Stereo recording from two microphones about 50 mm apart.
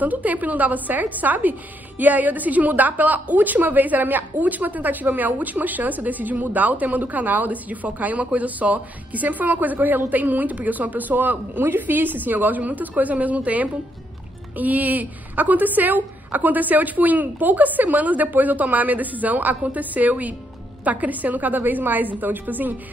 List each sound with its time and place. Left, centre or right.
0.0 s a woman's voice: right